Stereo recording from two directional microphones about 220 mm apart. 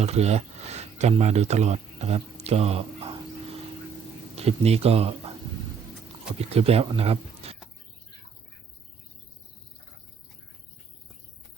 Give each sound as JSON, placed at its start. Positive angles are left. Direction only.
{"t": 0.0, "sound": "a sound", "side_deg": -30}
{"t": 4.4, "sound": "speech", "side_deg": -30}
{"t": 6.4, "sound": "speech", "side_deg": -25}